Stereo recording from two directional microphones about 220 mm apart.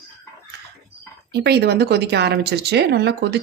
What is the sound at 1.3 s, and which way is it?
Speech, 50° right (ahead or behind).